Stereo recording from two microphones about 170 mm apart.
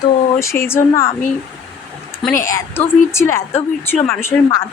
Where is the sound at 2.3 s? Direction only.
15° left (ahead or behind).